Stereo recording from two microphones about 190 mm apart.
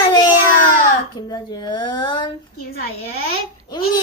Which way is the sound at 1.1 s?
20° left (ahead or behind).